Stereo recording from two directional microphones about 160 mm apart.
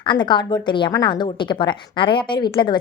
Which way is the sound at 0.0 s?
30° left (ahead or behind).